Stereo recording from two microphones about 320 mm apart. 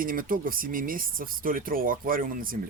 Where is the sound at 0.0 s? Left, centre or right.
Right.